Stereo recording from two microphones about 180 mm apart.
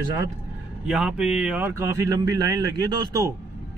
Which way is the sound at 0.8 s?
5° right (ahead or behind).